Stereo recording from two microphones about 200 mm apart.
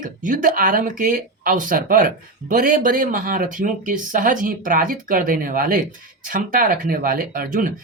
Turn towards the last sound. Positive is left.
turn(degrees=-45)  # may be behind; listen again after turning